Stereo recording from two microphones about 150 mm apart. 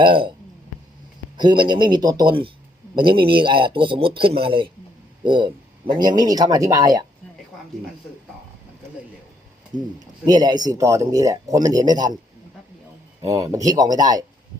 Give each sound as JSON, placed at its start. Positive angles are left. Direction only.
{"t": 0.0, "sound": "speech", "side_deg": -35}
{"t": 1.4, "sound": "speech", "side_deg": -30}
{"t": 10.2, "sound": "speech", "side_deg": -25}
{"t": 13.4, "sound": "speech", "side_deg": -20}